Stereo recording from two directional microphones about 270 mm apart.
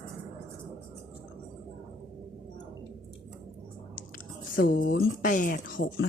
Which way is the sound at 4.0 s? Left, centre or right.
Left.